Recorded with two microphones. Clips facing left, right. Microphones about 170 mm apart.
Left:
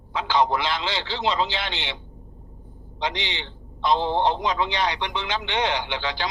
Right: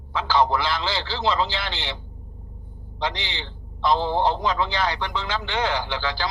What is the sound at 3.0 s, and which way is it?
A man's voice, 35° right (ahead or behind).